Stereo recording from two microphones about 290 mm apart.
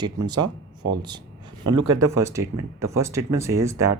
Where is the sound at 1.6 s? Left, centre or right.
Centre.